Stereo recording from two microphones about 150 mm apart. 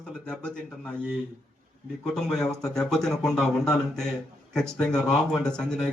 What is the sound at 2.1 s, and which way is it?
Speech, 5° left (ahead or behind).